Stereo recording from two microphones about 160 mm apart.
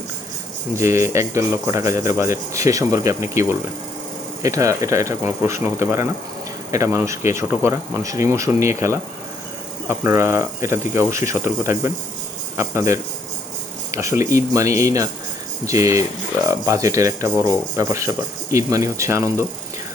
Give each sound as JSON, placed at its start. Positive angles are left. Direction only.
{"t": 0.8, "sound": "speech", "side_deg": -20}
{"t": 4.4, "sound": "speech", "side_deg": -20}